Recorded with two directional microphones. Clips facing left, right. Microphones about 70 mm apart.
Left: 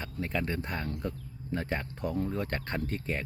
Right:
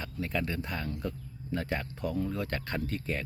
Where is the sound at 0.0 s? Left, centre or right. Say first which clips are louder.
Even; left.